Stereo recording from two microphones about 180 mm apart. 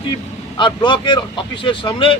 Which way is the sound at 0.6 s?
25° left (ahead or behind).